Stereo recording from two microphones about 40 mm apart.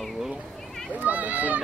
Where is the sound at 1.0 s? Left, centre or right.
Right.